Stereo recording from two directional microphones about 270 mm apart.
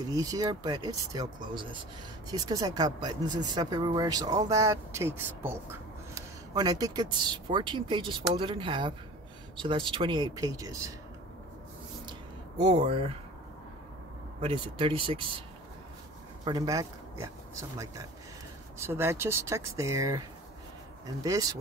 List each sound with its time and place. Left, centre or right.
0.1 s speech: centre
12.1 s a sound: right
14.4 s speech: centre
16.4 s speech: centre